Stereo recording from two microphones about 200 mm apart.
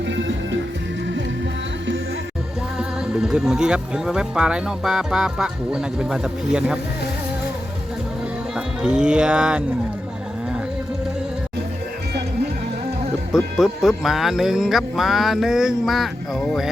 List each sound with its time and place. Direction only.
0.0 s music: 65° right (ahead or behind)
2.7 s speech: 5° right (ahead or behind)
8.5 s speech: 5° right (ahead or behind)
13.3 s speech: centre (ahead or behind)